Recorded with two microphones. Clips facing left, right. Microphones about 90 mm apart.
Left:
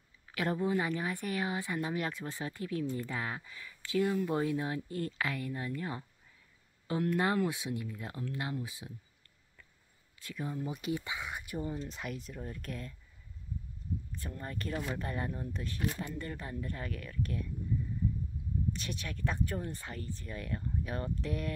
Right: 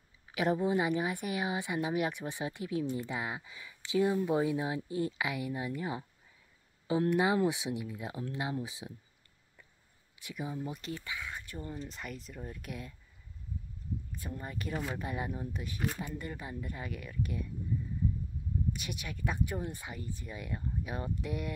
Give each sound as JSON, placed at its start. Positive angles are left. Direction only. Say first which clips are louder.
{"t": 0.3, "sound": "speech", "louder": "right 2 dB", "side_deg": -20}
{"t": 10.1, "sound": "speech", "louder": "even", "side_deg": -15}
{"t": 11.7, "sound": "speech", "louder": "left 2 dB", "side_deg": 0}
{"t": 14.1, "sound": "speech", "louder": "even", "side_deg": -10}
{"t": 18.7, "sound": "speech", "louder": "even", "side_deg": -10}